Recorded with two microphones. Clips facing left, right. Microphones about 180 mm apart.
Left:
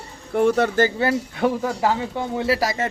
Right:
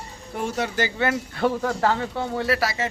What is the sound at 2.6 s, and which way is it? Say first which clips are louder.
Speech: left 2 dB; 45° left (ahead or behind).